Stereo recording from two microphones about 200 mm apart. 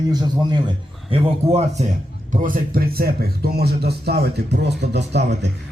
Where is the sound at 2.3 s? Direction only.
45° right (ahead or behind).